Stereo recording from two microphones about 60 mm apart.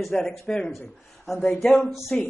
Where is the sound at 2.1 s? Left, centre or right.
Centre.